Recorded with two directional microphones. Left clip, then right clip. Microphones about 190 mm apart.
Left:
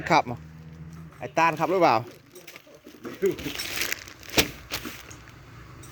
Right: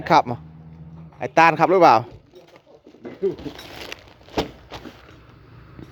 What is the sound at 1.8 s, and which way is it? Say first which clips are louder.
Speech: right 7 dB; 10° right (ahead or behind).